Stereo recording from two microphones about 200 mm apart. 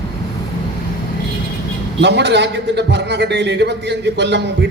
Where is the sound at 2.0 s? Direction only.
60° right (ahead or behind).